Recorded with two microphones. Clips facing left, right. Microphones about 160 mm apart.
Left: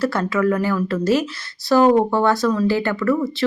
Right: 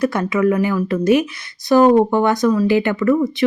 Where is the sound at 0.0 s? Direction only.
15° right (ahead or behind).